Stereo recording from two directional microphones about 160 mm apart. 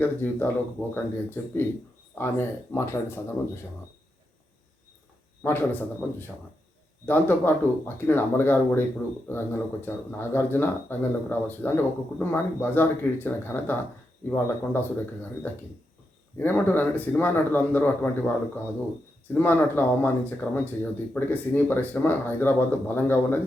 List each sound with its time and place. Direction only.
0.0 s speech: 10° left (ahead or behind)
5.4 s speech: 15° left (ahead or behind)
19.3 s speech: 10° left (ahead or behind)